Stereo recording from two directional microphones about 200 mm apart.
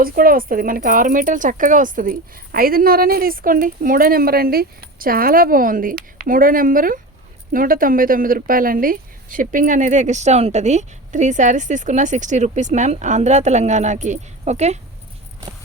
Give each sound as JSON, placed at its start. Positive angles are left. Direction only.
{"t": 0.0, "sound": "speech", "side_deg": -45}